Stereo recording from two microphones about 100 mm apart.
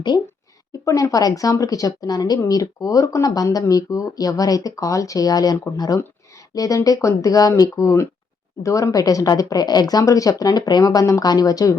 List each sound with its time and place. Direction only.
0.9 s speech: 30° left (ahead or behind)